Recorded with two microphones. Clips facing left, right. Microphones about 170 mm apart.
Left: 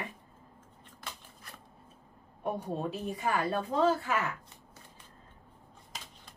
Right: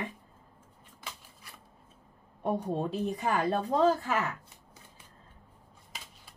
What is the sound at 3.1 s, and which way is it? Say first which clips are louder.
A woman's voice: right 1 dB; 40° right (ahead or behind).